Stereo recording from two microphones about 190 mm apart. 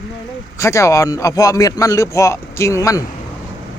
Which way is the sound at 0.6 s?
15° left (ahead or behind).